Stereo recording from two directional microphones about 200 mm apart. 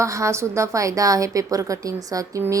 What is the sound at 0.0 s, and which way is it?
A woman's voice, 15° right (ahead or behind).